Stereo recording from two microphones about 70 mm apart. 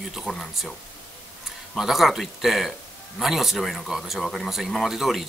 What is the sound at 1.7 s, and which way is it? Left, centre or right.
A man's voice, centre.